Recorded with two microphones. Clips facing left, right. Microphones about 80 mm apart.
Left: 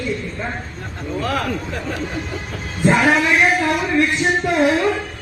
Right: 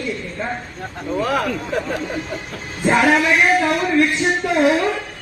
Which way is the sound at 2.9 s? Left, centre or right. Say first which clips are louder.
Even; centre.